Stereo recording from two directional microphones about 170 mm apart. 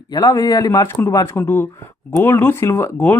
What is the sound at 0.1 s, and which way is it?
Speech, 25° left (ahead or behind).